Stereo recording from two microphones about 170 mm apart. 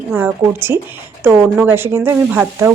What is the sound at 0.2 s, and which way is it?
A woman's voice, 15° right (ahead or behind).